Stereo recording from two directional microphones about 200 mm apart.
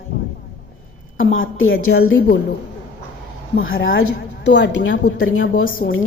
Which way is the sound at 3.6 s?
75° left (ahead or behind).